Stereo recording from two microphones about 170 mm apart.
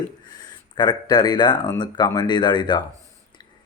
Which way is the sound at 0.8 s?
25° left (ahead or behind).